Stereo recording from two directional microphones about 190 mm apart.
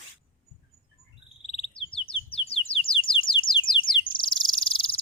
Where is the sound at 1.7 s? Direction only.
30° left (ahead or behind).